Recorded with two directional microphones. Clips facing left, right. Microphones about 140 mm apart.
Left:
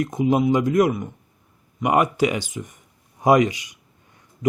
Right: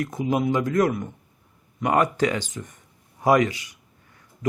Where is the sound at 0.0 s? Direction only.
20° left (ahead or behind).